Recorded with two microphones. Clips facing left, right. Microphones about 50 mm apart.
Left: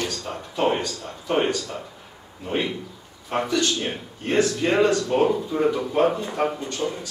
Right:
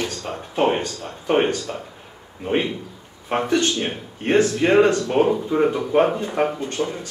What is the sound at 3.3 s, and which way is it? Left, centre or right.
Speech, right.